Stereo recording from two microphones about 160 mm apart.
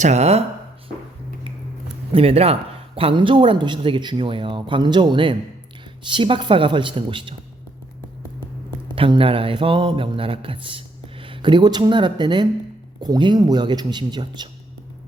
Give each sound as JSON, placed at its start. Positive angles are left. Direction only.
{"t": 0.0, "sound": "speech", "side_deg": -45}
{"t": 2.1, "sound": "mantra", "side_deg": -40}
{"t": 9.0, "sound": "mantra", "side_deg": -35}
{"t": 13.0, "sound": "speech", "side_deg": -25}